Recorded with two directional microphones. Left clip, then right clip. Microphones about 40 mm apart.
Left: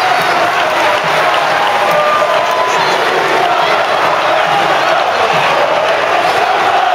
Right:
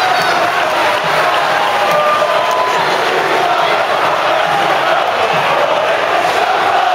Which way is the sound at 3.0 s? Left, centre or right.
Centre.